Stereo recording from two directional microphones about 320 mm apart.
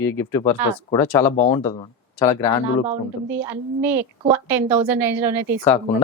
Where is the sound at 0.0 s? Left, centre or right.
Centre.